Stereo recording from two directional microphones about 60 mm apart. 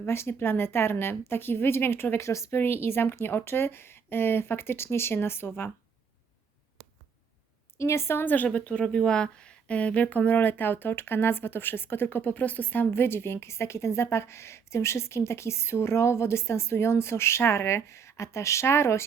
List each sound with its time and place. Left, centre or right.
0.0 s speech: left
2.2 s a woman's voice: left
2.6 s speech: left
7.8 s a woman's voice: left
8.8 s a woman's voice: centre; by 19.0 s left